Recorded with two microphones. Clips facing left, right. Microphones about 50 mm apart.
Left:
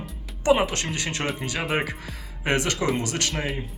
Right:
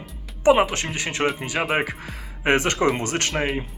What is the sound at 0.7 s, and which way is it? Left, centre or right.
Speech, right.